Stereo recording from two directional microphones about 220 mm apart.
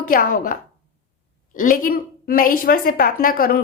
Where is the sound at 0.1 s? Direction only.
40° left (ahead or behind).